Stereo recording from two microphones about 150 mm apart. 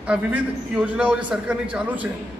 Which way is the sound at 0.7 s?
10° right (ahead or behind).